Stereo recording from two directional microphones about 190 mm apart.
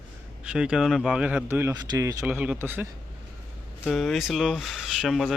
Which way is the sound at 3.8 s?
Centre (ahead or behind).